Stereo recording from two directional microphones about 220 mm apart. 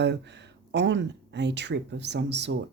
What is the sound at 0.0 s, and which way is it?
Speech, 50° right (ahead or behind).